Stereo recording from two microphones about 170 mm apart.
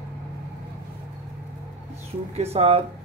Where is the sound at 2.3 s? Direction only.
35° right (ahead or behind).